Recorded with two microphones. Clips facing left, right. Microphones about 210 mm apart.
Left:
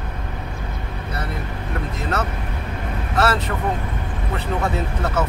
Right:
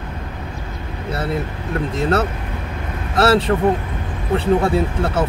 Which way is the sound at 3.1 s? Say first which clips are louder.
Right 6 dB; 30° right (ahead or behind).